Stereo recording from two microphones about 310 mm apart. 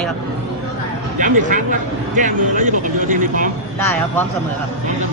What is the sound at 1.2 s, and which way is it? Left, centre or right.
A man's voice, right.